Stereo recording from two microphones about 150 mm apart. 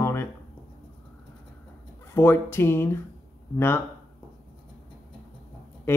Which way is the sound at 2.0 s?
15° left (ahead or behind).